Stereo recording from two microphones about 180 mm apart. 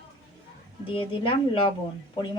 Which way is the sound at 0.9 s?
30° left (ahead or behind).